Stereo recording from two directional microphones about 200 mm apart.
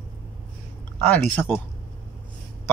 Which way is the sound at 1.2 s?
10° left (ahead or behind).